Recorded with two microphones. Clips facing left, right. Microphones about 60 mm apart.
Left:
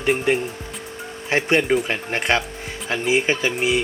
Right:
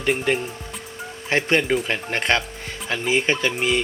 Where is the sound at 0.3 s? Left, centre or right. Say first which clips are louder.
Left 2 dB; centre.